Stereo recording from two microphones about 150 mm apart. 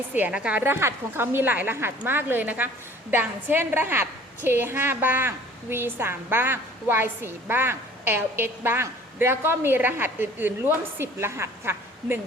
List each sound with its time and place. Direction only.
0.1 s a woman's voice: 10° right (ahead or behind)